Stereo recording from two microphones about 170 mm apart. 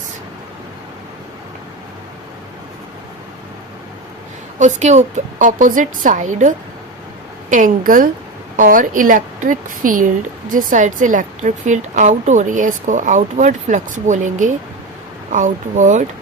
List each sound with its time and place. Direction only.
4.6 s a woman's voice: 45° right (ahead or behind)
7.5 s a woman's voice: 50° right (ahead or behind)